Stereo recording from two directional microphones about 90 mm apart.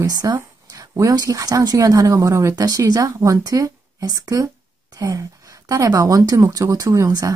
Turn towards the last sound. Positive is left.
turn(degrees=-40)  # may be behind; listen again after turning